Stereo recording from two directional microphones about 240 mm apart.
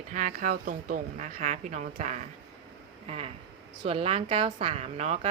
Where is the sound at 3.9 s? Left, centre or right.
Right.